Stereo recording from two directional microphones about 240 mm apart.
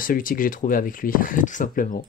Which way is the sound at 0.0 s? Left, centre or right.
Left.